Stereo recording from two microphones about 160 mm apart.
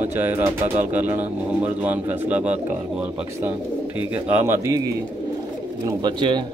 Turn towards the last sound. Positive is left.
turn(degrees=-30)  # may be behind; listen again after turning